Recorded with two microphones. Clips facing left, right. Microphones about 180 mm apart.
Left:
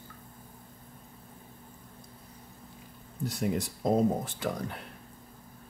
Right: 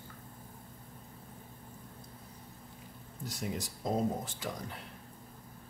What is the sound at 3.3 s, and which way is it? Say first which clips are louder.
Speech: left 7 dB; 60° left (ahead or behind).